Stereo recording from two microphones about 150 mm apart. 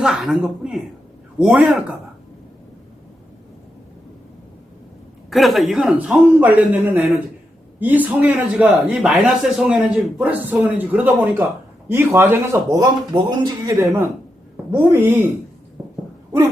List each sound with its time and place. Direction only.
0.0 s a man's voice: 5° right (ahead or behind)
5.3 s a man's voice: centre (ahead or behind)
15.8 s a sound: 10° right (ahead or behind)